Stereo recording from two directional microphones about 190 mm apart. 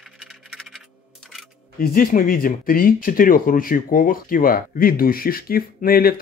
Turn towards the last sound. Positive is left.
turn(degrees=50)  # may be behind; listen again after turning